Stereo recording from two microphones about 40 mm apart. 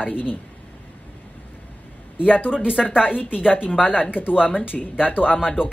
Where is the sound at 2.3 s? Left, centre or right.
Left.